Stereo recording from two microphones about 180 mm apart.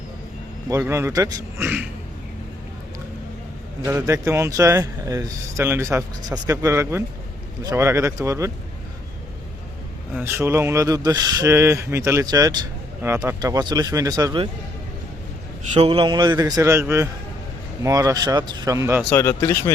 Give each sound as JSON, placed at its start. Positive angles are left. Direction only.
{"t": 0.7, "sound": "speech", "side_deg": -15}
{"t": 3.8, "sound": "speech", "side_deg": -15}
{"t": 10.2, "sound": "speech", "side_deg": -15}
{"t": 15.7, "sound": "speech", "side_deg": -30}
{"t": 19.1, "sound": "speech", "side_deg": 15}